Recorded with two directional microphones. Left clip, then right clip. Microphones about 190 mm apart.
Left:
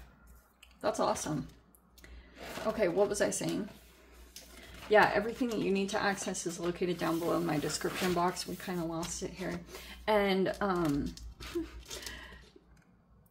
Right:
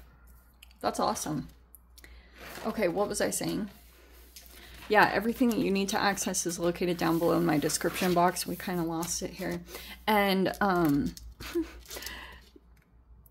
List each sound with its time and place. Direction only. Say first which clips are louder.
0.7 s speech: right 2 dB; 30° right (ahead or behind)
2.8 s speech: right 1 dB; 30° right (ahead or behind)
4.8 s speech: right 2 dB; 65° right (ahead or behind)
11.6 s a sound: right 3 dB; 55° right (ahead or behind)